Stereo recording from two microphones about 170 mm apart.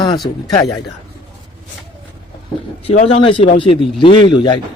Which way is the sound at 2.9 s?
35° left (ahead or behind).